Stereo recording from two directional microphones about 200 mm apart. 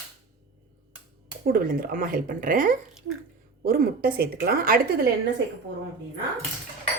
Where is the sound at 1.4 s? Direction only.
45° right (ahead or behind).